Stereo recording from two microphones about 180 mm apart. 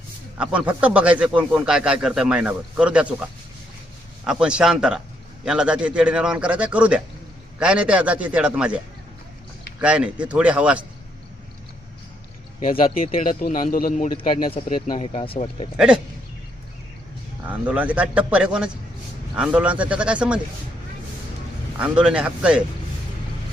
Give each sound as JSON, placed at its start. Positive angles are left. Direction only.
{"t": 0.3, "sound": "speech", "side_deg": -5}
{"t": 4.2, "sound": "a man's voice", "side_deg": -5}
{"t": 9.8, "sound": "speech", "side_deg": -5}
{"t": 13.1, "sound": "speech", "side_deg": 50}
{"t": 14.2, "sound": "speech", "side_deg": 30}
{"t": 17.4, "sound": "speech", "side_deg": -10}
{"t": 21.8, "sound": "a man's voice", "side_deg": -5}